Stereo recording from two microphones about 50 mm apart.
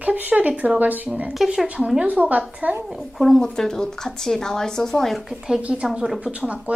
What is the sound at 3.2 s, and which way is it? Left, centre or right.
Speech, centre.